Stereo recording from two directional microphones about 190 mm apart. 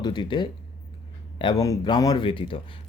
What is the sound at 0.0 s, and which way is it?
Speech, 25° left (ahead or behind).